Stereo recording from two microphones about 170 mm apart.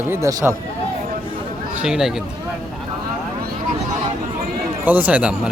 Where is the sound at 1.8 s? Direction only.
5° right (ahead or behind).